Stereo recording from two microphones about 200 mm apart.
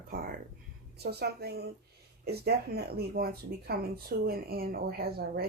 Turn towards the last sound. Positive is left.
turn(degrees=-50)  # may be behind; listen again after turning